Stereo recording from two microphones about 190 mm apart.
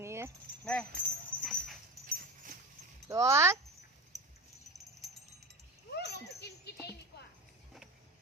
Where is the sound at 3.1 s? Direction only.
15° right (ahead or behind).